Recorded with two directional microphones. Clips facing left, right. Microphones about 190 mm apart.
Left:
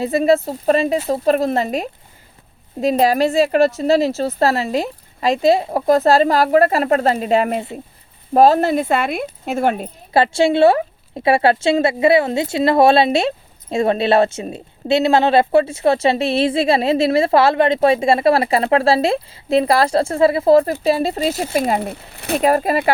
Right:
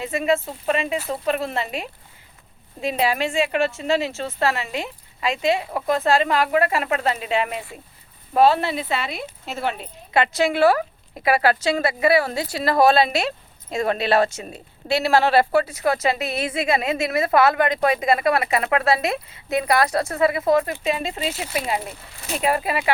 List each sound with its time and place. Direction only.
0.0 s a woman's voice: 35° left (ahead or behind)
10.1 s speech: 30° left (ahead or behind); by 22.4 s 60° left (ahead or behind)
22.4 s a woman's voice: 40° left (ahead or behind)